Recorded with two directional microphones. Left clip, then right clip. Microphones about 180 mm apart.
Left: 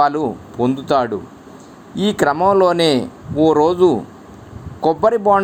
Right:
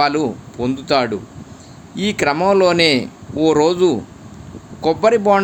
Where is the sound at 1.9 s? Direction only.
25° right (ahead or behind).